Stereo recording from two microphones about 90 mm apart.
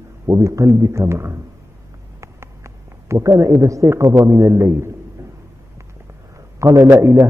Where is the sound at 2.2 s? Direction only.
35° right (ahead or behind).